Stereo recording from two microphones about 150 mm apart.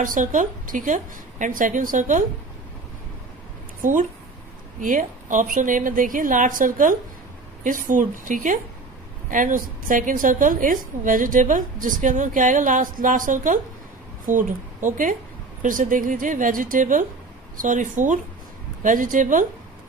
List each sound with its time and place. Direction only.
0.0 s a woman's voice: 60° right (ahead or behind)
3.8 s a woman's voice: 65° right (ahead or behind)